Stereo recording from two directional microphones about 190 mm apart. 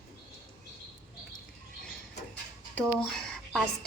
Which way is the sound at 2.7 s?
5° left (ahead or behind).